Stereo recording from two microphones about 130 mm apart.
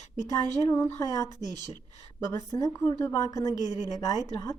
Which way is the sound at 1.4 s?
30° right (ahead or behind).